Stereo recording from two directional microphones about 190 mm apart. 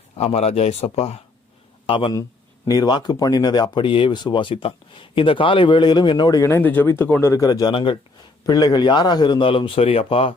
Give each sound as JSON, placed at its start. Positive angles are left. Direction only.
{"t": 0.2, "sound": "speech", "side_deg": 35}